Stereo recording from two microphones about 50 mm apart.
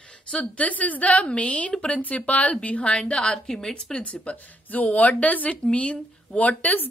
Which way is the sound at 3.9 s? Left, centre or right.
Left.